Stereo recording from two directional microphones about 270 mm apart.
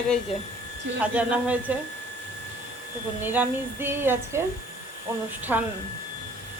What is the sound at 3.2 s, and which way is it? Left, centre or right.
Female singing, centre.